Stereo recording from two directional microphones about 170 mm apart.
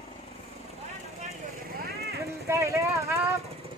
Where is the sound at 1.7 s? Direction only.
65° right (ahead or behind).